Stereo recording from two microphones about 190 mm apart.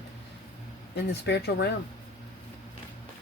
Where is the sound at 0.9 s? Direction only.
60° left (ahead or behind).